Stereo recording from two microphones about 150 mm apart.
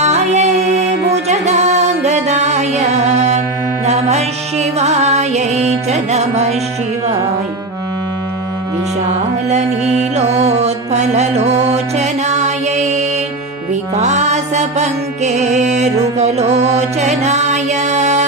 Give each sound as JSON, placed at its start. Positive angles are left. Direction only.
{"t": 0.0, "sound": "music", "side_deg": -50}
{"t": 9.5, "sound": "mantra", "side_deg": -50}
{"t": 11.9, "sound": "music", "side_deg": -50}